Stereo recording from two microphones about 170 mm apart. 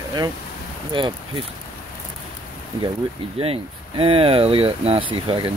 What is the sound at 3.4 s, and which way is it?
Speech, 35° right (ahead or behind).